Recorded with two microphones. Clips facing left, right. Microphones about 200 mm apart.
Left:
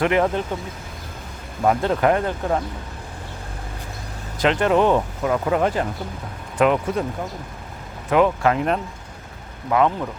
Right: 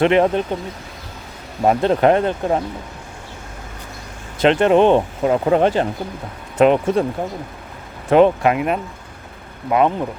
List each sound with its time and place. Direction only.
0.0 s speech: 25° right (ahead or behind)
1.6 s speech: 25° right (ahead or behind)
4.4 s speech: 25° right (ahead or behind)
8.1 s speech: 25° right (ahead or behind)